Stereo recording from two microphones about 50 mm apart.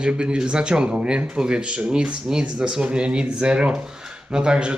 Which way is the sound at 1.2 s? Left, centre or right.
Centre.